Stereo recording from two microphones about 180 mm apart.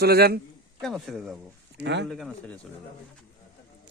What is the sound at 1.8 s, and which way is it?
Speech, 75° right (ahead or behind).